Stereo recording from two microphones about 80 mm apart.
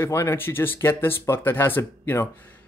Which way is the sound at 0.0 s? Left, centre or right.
Left.